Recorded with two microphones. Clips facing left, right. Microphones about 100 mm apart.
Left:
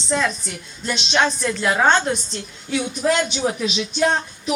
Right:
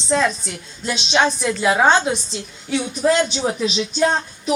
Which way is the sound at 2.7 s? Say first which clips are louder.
Right 2 dB; 30° right (ahead or behind).